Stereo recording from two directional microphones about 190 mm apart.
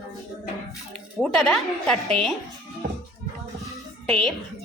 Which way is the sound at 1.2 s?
Centre (ahead or behind).